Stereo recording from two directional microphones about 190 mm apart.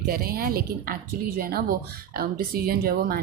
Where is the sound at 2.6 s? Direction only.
55° right (ahead or behind).